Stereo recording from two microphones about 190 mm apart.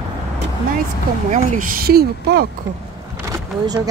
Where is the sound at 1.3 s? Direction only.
40° right (ahead or behind); by 2.5 s 55° right (ahead or behind).